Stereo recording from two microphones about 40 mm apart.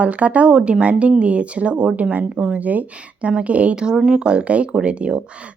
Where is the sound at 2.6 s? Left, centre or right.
Right.